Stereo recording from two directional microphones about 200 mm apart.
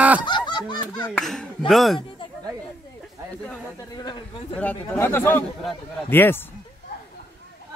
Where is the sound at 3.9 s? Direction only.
20° left (ahead or behind).